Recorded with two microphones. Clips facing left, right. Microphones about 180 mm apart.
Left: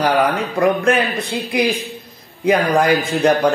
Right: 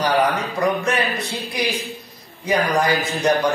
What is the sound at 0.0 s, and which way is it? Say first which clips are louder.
Speech: left 3 dB; 55° left (ahead or behind).